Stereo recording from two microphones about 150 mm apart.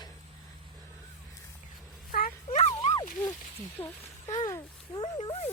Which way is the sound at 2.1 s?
65° left (ahead or behind).